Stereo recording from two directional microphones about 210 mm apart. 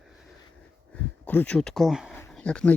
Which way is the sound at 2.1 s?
10° left (ahead or behind).